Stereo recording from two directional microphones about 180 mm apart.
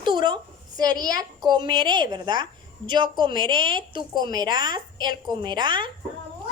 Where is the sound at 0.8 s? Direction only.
20° right (ahead or behind).